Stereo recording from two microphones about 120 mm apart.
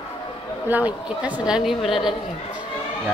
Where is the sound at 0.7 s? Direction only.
15° right (ahead or behind).